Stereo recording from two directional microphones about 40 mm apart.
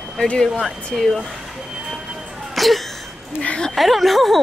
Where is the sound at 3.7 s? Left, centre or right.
Centre.